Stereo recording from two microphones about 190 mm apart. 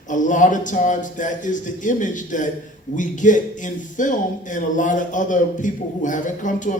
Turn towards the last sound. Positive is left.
turn(degrees=40)  # may be behind; listen again after turning